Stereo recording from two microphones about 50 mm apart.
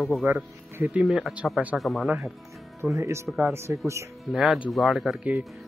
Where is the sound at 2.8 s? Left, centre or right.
Right.